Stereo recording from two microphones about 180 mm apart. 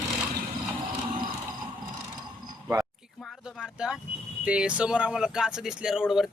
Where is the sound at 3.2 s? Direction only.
5° left (ahead or behind).